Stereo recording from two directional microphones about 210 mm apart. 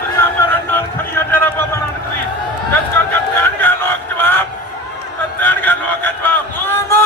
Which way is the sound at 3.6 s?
10° left (ahead or behind).